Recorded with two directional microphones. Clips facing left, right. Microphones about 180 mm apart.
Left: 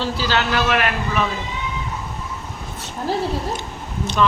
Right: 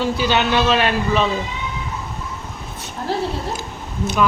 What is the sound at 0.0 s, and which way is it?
Speech, 20° right (ahead or behind).